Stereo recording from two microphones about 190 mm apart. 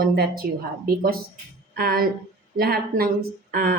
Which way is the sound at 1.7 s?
50° right (ahead or behind).